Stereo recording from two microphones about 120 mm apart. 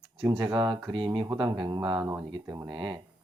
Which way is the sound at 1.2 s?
30° right (ahead or behind).